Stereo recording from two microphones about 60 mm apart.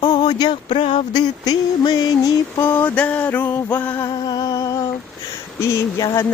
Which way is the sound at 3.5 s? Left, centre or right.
Left.